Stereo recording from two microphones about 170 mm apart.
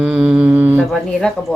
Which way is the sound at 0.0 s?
5° right (ahead or behind).